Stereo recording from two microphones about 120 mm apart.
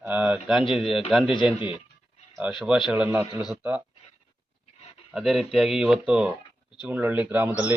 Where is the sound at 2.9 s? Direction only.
10° right (ahead or behind).